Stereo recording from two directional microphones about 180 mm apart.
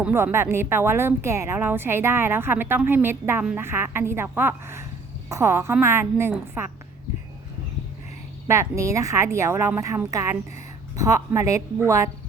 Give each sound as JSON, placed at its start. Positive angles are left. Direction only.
{"t": 0.0, "sound": "a woman's voice", "side_deg": -15}
{"t": 8.4, "sound": "a woman's voice", "side_deg": -15}